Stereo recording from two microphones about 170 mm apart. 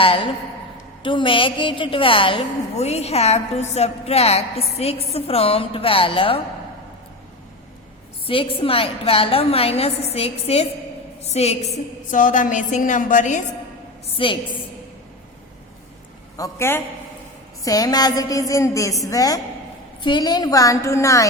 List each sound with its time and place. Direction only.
0.0 s a woman's voice: 30° left (ahead or behind)
8.3 s a woman's voice: 30° left (ahead or behind)
12.1 s a woman's voice: 50° left (ahead or behind)
14.1 s a woman's voice: 30° left (ahead or behind)
16.4 s a man's voice: 15° left (ahead or behind)